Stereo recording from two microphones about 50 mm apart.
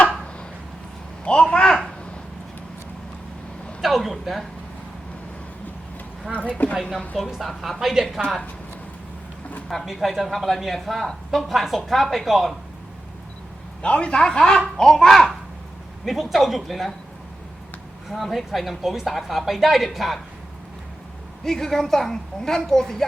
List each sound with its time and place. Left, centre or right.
1.2 s a sound: centre
3.8 s speech: centre
6.6 s a woman's voice: left
7.3 s speech: centre
9.6 s speech: centre
13.8 s a child's voice: left; by 16.9 s centre
18.1 s speech: centre
21.4 s a woman's voice: centre